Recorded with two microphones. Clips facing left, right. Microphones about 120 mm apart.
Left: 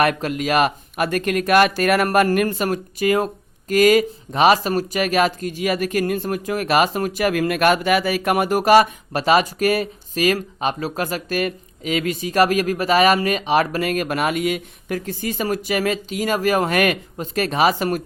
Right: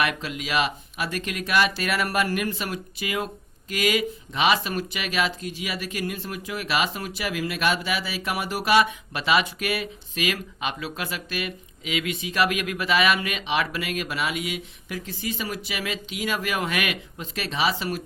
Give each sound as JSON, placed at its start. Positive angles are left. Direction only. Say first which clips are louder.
{"t": 0.0, "sound": "speech", "louder": "left 8 dB", "side_deg": 45}